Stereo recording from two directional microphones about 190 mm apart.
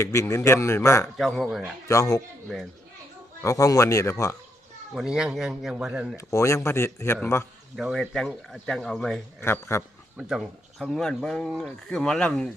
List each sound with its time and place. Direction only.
0.0 s speech: 15° left (ahead or behind)
1.1 s speech: centre (ahead or behind)
1.9 s speech: 15° left (ahead or behind)
2.5 s speech: centre (ahead or behind)
3.4 s speech: 15° left (ahead or behind)
4.9 s speech: 5° right (ahead or behind)
6.1 s speech: 15° left (ahead or behind)
7.8 s speech: centre (ahead or behind)
10.2 s speech: centre (ahead or behind)